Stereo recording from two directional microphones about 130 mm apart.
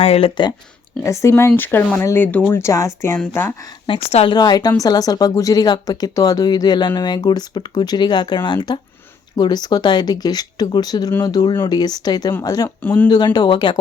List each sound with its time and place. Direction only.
0.0 s speech: 50° left (ahead or behind)
1.0 s speech: 25° left (ahead or behind)
3.8 s speech: 45° left (ahead or behind)
4.4 s speech: 30° left (ahead or behind)
12.8 s speech: 15° left (ahead or behind)
13.1 s speech: 35° left (ahead or behind)